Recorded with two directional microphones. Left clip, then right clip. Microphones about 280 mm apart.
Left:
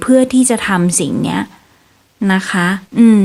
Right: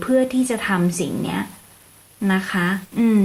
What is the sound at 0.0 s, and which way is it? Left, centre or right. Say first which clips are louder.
Speech: left 7 dB; left.